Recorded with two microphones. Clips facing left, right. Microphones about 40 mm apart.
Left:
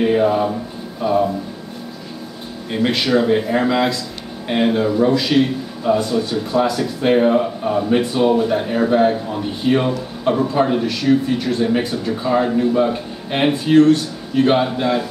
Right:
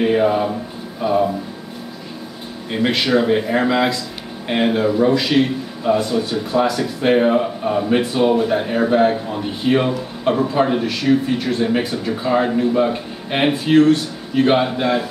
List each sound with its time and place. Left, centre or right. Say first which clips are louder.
0.0 s a man's voice: even; centre
2.7 s a man's voice: even; centre